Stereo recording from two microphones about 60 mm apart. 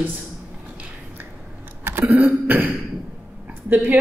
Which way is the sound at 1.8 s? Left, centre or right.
Right.